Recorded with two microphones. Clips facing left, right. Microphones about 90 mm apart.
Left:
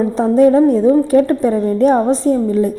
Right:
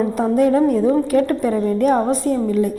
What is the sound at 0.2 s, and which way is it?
A woman's voice, 30° left (ahead or behind).